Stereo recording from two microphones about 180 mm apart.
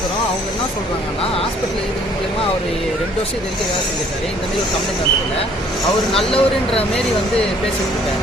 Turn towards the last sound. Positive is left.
turn(degrees=30)  # may be behind; listen again after turning